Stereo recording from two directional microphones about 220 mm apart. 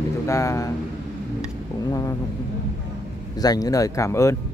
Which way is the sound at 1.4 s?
15° left (ahead or behind).